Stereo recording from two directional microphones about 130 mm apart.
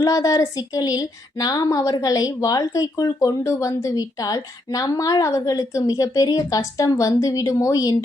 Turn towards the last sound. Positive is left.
turn(degrees=25)  # may be behind; listen again after turning